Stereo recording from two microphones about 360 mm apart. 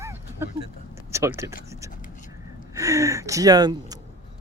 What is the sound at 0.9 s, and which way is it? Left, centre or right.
Speech, centre.